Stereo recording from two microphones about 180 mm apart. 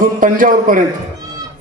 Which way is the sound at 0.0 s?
50° right (ahead or behind).